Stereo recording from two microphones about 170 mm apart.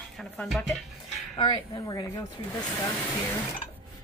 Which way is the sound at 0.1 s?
Centre (ahead or behind).